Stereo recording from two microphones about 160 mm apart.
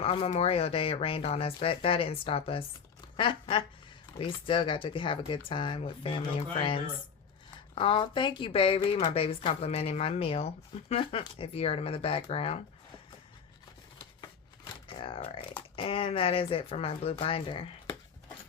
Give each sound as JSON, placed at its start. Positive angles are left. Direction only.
{"t": 0.0, "sound": "speech", "side_deg": 35}
{"t": 7.8, "sound": "speech", "side_deg": 30}
{"t": 14.8, "sound": "speech", "side_deg": 35}